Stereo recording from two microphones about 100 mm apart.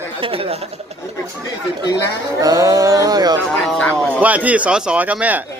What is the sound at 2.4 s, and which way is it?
Speech, 35° right (ahead or behind).